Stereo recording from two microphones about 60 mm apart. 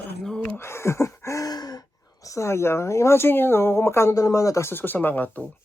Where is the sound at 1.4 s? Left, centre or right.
Left.